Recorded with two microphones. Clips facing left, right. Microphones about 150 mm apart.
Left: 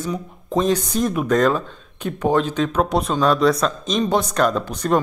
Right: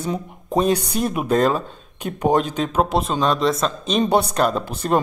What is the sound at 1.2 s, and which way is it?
Speech, 35° right (ahead or behind).